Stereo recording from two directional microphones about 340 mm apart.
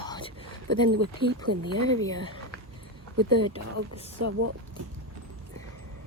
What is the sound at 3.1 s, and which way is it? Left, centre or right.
Speech, right.